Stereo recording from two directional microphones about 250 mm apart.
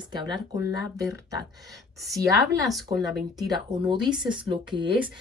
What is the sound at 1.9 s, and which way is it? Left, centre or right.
Speech, centre.